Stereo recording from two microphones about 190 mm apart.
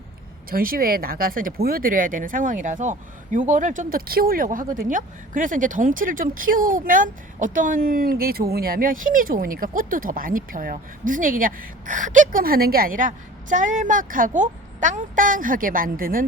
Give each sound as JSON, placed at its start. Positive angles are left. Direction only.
{"t": 0.5, "sound": "speech", "side_deg": -50}